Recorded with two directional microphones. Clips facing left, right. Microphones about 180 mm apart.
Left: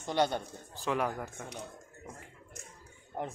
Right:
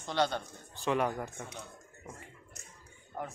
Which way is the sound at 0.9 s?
Centre (ahead or behind).